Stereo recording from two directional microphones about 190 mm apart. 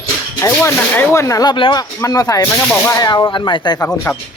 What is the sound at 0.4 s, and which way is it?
Speech, 15° left (ahead or behind).